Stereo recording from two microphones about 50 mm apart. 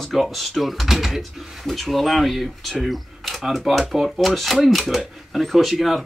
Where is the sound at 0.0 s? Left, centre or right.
Centre.